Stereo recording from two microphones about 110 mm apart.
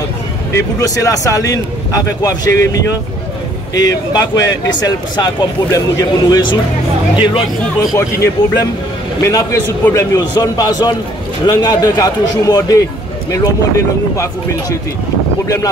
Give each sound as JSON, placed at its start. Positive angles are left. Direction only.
{"t": 0.6, "sound": "speech", "side_deg": 30}
{"t": 7.8, "sound": "speech", "side_deg": 30}
{"t": 15.4, "sound": "speech", "side_deg": 30}